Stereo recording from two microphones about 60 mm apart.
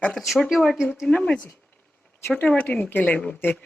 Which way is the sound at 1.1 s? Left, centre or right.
Centre.